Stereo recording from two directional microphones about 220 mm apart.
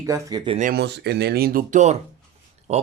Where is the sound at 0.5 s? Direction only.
40° right (ahead or behind).